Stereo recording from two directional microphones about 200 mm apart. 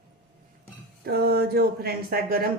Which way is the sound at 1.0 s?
50° right (ahead or behind).